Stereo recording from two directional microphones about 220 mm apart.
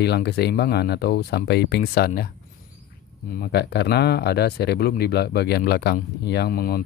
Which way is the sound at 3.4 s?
50° left (ahead or behind).